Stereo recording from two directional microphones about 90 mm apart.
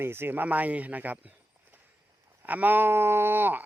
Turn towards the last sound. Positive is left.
turn(degrees=-20)  # may be behind; listen again after turning